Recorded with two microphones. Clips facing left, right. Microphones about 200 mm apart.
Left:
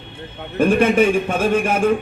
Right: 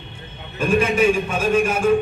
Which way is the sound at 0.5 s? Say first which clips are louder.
Left 4 dB; 60° left (ahead or behind).